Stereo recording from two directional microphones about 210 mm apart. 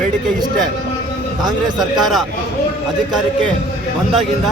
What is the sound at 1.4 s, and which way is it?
Speech, 20° right (ahead or behind).